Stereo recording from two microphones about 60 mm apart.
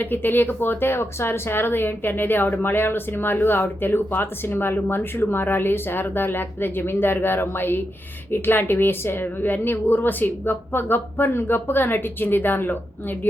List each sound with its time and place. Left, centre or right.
0.0 s speech: left